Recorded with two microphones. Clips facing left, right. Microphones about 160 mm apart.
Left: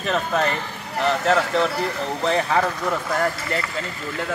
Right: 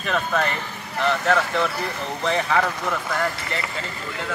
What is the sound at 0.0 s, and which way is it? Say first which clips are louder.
Speech: left 2 dB; 30° left (ahead or behind).